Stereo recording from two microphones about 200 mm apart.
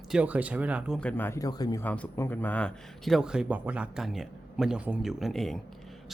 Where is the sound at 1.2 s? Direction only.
15° left (ahead or behind).